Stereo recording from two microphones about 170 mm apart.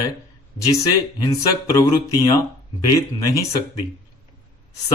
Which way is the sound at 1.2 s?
20° left (ahead or behind).